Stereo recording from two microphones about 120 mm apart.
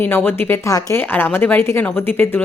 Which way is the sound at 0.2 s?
15° left (ahead or behind).